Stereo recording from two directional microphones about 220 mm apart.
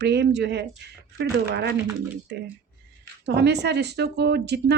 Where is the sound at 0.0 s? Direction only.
50° right (ahead or behind).